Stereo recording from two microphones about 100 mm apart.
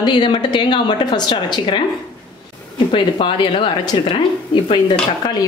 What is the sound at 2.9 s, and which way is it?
A woman's voice, 60° left (ahead or behind).